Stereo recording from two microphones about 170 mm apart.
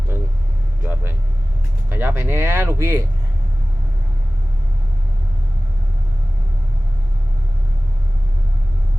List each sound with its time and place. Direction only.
0.1 s vehicle: 15° right (ahead or behind)
1.9 s speech: 15° right (ahead or behind)